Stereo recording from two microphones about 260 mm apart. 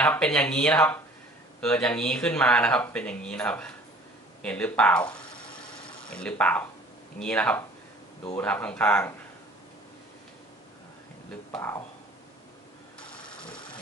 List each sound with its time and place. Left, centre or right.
0.0 s speech: centre
5.3 s a sound: centre
7.2 s speech: centre
11.5 s speech: centre
13.2 s engine: centre